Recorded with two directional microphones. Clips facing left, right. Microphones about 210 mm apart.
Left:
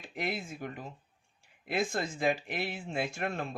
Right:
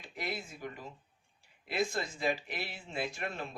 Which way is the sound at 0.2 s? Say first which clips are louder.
Left 4 dB; 50° left (ahead or behind).